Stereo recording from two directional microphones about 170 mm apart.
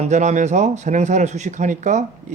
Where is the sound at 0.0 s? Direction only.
45° right (ahead or behind).